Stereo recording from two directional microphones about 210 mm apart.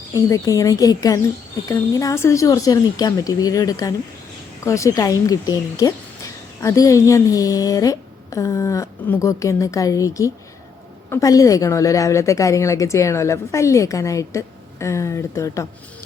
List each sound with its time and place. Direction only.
0.1 s speech: 15° left (ahead or behind)